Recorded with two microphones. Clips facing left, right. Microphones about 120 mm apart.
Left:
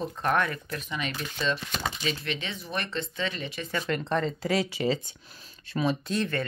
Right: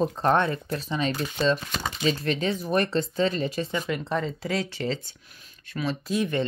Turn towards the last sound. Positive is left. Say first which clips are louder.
# right 3 dB
turn(degrees=-15)  # may be behind; listen again after turning